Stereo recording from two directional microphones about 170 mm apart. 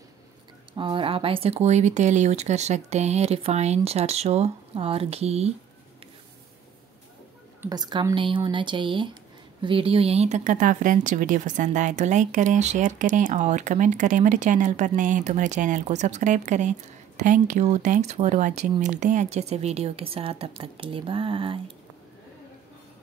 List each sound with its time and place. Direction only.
0.7 s speech: 30° right (ahead or behind)
7.7 s speech: 25° right (ahead or behind)